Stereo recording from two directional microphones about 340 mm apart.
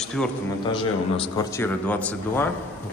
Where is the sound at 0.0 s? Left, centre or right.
Centre.